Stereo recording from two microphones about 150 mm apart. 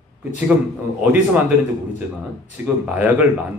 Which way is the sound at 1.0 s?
10° right (ahead or behind).